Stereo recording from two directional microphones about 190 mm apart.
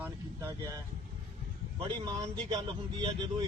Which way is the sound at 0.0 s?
15° right (ahead or behind).